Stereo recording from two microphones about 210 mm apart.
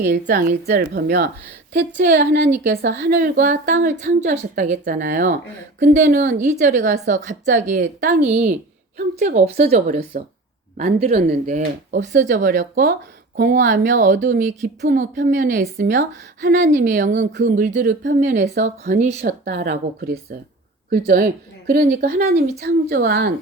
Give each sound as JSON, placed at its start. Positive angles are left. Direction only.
{"t": 0.0, "sound": "a woman's voice", "side_deg": -40}
{"t": 3.8, "sound": "a woman's voice", "side_deg": -55}
{"t": 4.2, "sound": "a woman's voice", "side_deg": -35}
{"t": 12.4, "sound": "a woman's voice", "side_deg": -50}
{"t": 19.2, "sound": "a woman's voice", "side_deg": -50}